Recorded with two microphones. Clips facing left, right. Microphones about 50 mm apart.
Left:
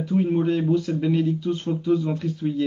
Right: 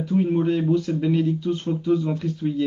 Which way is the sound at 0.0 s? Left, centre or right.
Centre.